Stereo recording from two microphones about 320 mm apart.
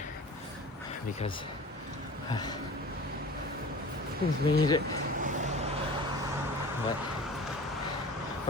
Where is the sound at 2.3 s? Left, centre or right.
Centre.